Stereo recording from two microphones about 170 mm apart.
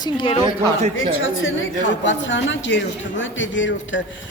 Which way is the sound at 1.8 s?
90° left.